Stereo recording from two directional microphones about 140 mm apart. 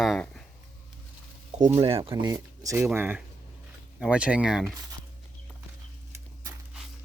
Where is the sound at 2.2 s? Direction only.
20° right (ahead or behind); by 4.7 s 5° right (ahead or behind).